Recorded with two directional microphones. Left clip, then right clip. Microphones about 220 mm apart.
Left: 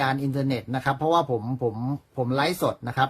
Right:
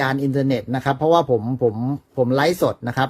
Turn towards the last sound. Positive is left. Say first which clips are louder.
# right 5 dB
turn(degrees=-20)  # may be behind; listen again after turning